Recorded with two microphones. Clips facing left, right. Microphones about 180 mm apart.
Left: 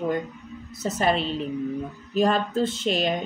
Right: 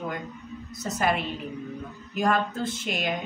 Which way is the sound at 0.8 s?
30° left (ahead or behind).